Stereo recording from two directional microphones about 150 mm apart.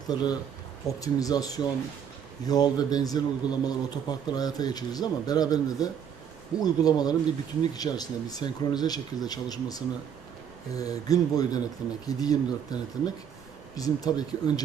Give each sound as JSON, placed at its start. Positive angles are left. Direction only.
{"t": 0.1, "sound": "a man's voice", "side_deg": 25}